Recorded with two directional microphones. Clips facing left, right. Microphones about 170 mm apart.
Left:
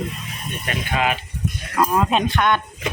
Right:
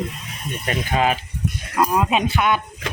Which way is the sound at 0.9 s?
35° right (ahead or behind).